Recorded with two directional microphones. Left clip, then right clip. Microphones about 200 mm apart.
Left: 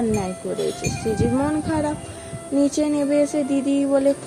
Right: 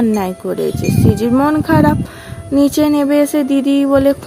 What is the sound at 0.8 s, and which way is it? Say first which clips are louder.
Music: right 7 dB; 45° right (ahead or behind).